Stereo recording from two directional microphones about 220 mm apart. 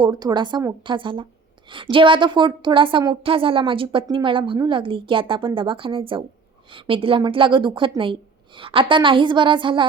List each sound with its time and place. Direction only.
0.0 s a woman's voice: 20° right (ahead or behind)